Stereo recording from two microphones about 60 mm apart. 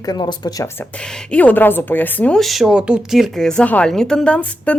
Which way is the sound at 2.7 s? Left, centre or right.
Centre.